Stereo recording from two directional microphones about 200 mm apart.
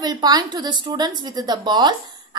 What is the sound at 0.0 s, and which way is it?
A woman's voice, 20° right (ahead or behind).